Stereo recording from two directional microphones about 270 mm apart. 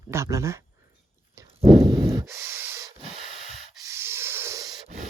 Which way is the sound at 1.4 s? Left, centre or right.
Centre.